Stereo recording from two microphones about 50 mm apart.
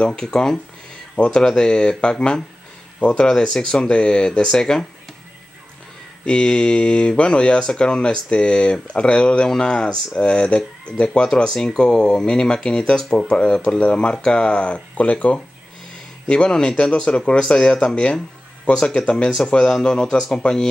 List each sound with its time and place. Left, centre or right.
0.0 s speech: centre
6.2 s speech: centre
16.3 s speech: centre
20.2 s speech: centre